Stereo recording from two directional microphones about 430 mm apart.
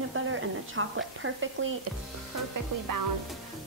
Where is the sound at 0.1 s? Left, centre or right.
Right.